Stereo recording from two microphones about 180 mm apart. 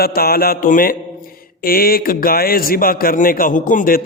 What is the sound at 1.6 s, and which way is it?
A man's voice, 55° left (ahead or behind).